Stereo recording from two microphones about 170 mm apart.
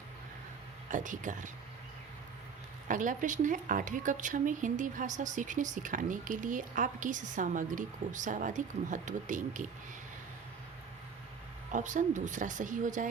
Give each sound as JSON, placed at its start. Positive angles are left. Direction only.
{"t": 0.9, "sound": "a woman's voice", "side_deg": -50}
{"t": 2.8, "sound": "a woman's voice", "side_deg": -50}
{"t": 11.7, "sound": "a woman's voice", "side_deg": -45}